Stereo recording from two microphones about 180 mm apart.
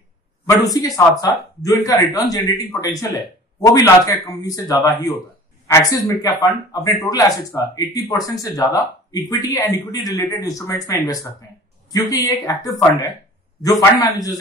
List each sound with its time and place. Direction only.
0.5 s speech: 20° left (ahead or behind)